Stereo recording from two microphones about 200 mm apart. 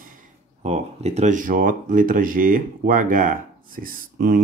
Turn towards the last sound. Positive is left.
turn(degrees=-45)  # may be behind; listen again after turning